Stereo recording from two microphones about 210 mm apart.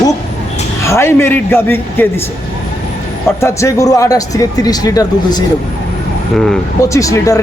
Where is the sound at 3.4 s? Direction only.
15° left (ahead or behind).